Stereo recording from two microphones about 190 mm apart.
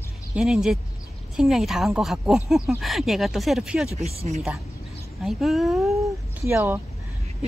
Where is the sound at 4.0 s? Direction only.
35° right (ahead or behind).